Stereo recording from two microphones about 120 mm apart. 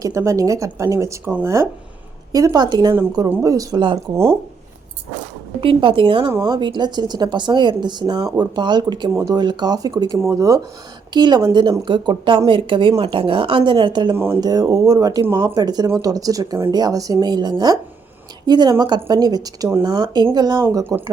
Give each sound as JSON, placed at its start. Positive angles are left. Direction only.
{"t": 0.0, "sound": "speech", "side_deg": -25}
{"t": 2.3, "sound": "speech", "side_deg": -30}
{"t": 5.5, "sound": "speech", "side_deg": -45}